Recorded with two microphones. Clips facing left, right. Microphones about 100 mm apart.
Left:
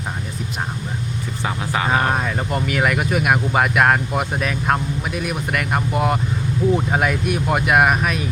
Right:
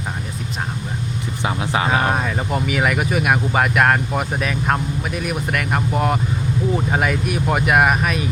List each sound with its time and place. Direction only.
1.5 s vehicle: 20° right (ahead or behind)
1.9 s speech: 5° right (ahead or behind)